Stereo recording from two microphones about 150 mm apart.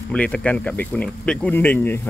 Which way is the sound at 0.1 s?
5° left (ahead or behind).